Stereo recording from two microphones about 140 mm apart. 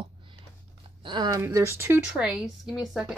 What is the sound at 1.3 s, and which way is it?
Speech, 20° right (ahead or behind).